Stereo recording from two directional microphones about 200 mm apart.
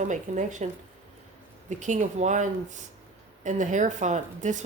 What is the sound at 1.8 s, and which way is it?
Speech, 35° right (ahead or behind).